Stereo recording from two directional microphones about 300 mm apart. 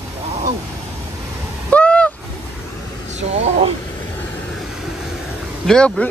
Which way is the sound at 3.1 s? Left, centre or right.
Right.